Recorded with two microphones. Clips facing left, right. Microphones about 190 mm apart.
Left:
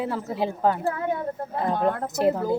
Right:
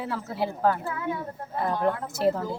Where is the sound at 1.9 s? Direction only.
40° left (ahead or behind).